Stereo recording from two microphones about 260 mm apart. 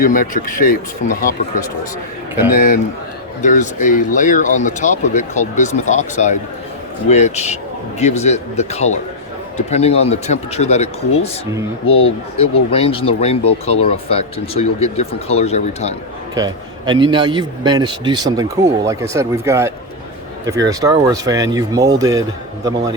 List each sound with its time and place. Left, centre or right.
0.0 s speech: left
3.4 s speech: left
11.9 s speech: left
12.4 s speech: left
16.3 s a man's voice: centre